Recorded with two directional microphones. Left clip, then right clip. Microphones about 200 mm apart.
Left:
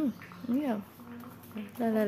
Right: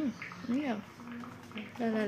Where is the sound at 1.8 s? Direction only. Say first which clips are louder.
Left 4 dB; 25° left (ahead or behind).